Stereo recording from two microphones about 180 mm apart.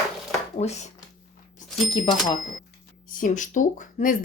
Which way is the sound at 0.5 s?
40° left (ahead or behind).